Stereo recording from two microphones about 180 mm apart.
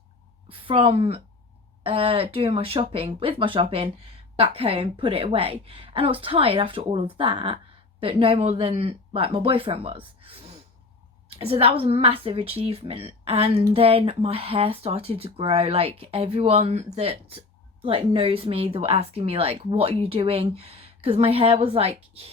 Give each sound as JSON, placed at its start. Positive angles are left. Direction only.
{"t": 0.4, "sound": "a woman's voice", "side_deg": -30}